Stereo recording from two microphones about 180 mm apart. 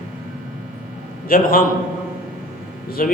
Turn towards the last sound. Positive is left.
turn(degrees=50)  # may be behind; listen again after turning